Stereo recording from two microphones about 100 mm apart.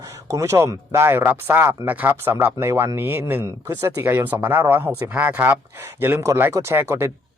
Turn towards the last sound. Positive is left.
turn(degrees=-25)  # may be behind; listen again after turning